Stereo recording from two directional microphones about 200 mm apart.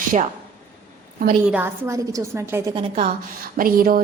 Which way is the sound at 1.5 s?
10° right (ahead or behind).